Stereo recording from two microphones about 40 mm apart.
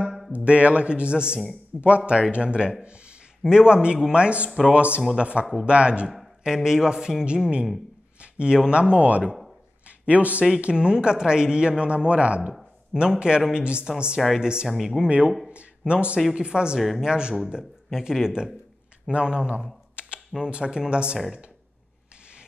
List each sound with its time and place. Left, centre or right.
0.5 s a man's voice: right
4.5 s speech: centre
4.7 s speech: right
6.4 s speech: centre
8.2 s a sound: right
8.6 s speech: right
9.8 s a sound: right
10.6 s speech: right
14.7 s speech: centre
15.0 s speech: right
15.4 s a sound: right
15.9 s speech: right
16.3 s speech: centre